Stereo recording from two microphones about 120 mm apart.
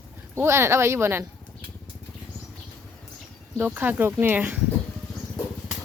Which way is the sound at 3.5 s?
15° right (ahead or behind).